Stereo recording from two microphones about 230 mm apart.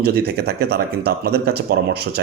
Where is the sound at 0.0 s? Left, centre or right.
Right.